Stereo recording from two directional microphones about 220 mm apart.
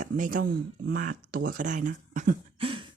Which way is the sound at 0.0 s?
40° right (ahead or behind).